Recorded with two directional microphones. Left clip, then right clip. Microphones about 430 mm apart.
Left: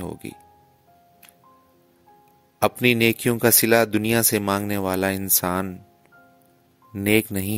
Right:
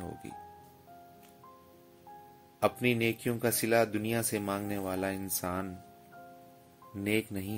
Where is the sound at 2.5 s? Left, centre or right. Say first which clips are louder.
Left 10 dB; left.